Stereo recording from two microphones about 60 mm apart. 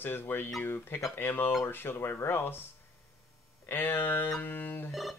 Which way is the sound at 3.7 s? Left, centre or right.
Left.